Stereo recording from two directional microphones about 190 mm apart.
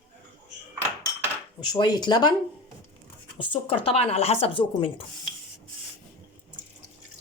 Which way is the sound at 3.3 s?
25° left (ahead or behind).